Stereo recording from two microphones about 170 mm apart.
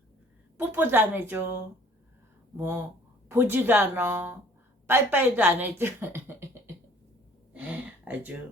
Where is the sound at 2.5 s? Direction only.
15° right (ahead or behind).